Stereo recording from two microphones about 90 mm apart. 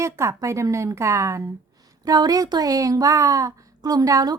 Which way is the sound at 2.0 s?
45° right (ahead or behind).